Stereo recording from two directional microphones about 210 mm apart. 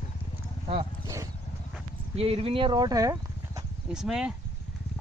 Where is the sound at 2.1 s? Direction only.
30° right (ahead or behind).